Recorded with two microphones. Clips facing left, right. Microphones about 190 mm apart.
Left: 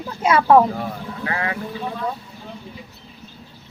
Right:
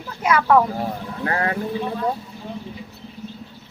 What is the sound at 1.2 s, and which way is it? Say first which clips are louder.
Speech: right 3 dB; 40° right (ahead or behind).